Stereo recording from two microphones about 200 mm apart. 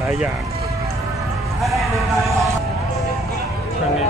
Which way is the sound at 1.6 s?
Centre (ahead or behind).